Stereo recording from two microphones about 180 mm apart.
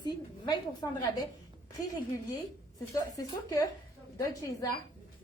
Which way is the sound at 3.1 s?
20° left (ahead or behind).